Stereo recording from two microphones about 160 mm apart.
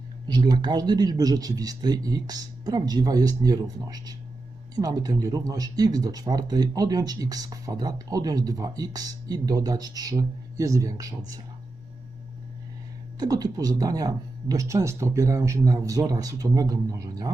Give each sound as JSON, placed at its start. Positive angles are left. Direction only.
{"t": 0.3, "sound": "speech", "side_deg": -25}
{"t": 13.1, "sound": "speech", "side_deg": -25}